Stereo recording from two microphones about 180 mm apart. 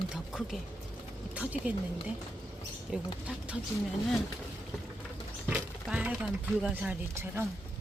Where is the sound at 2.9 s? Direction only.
5° right (ahead or behind).